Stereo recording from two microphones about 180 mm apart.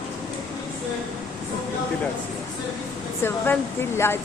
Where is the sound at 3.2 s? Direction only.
10° left (ahead or behind).